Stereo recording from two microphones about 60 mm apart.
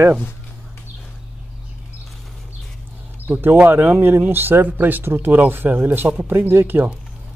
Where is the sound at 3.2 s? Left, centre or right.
Right.